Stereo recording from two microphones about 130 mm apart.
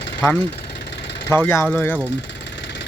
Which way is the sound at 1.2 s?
15° left (ahead or behind).